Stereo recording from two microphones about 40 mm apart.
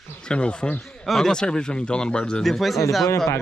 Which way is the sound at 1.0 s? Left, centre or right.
Centre.